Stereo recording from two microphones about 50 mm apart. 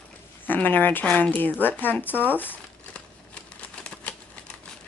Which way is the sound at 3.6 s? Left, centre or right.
Left.